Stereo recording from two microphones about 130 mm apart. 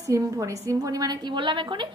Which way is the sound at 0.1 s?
25° right (ahead or behind).